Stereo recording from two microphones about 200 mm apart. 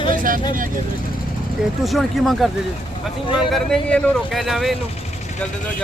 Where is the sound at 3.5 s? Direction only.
5° left (ahead or behind).